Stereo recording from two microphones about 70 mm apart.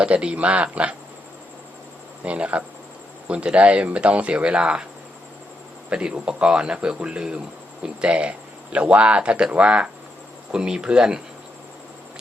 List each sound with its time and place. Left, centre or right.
0.0 s speech: centre
2.2 s speech: centre
5.9 s speech: centre